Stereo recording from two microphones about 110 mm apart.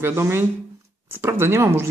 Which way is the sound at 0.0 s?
20° right (ahead or behind).